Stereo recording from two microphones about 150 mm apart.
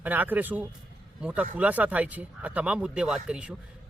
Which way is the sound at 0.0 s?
10° right (ahead or behind).